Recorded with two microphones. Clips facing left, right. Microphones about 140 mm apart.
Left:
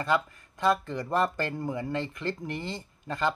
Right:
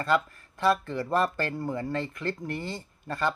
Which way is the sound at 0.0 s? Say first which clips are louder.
Right 1 dB; 15° left (ahead or behind).